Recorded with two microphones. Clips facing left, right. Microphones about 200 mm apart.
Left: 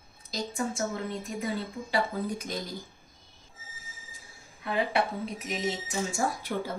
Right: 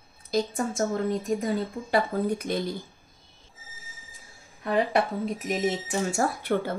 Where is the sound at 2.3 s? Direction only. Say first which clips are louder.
Right 7 dB; 60° right (ahead or behind).